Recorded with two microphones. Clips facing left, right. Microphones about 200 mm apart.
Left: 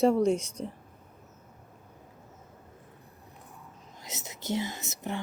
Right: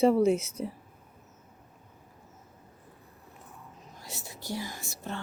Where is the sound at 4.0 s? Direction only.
20° left (ahead or behind).